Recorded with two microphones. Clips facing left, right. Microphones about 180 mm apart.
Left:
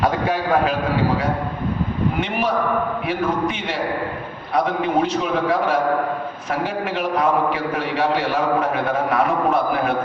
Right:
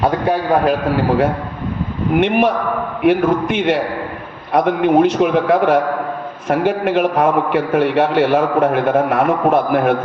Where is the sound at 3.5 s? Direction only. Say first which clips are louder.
Right 7 dB; 60° right (ahead or behind).